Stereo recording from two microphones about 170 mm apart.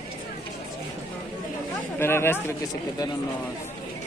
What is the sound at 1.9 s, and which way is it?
Speech, 15° left (ahead or behind).